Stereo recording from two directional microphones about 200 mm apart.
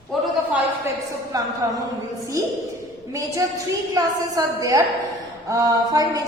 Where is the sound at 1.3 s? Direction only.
20° right (ahead or behind).